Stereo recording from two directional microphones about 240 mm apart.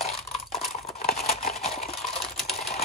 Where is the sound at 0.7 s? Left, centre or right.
Left.